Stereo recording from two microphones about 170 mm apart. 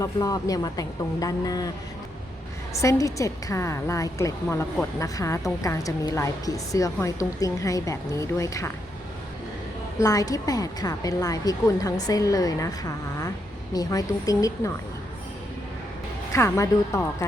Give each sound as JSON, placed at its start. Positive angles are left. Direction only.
{"t": 0.0, "sound": "a woman's voice", "side_deg": 20}
{"t": 2.7, "sound": "a woman's voice", "side_deg": 20}
{"t": 10.0, "sound": "a woman's voice", "side_deg": 20}
{"t": 16.3, "sound": "a woman's voice", "side_deg": 15}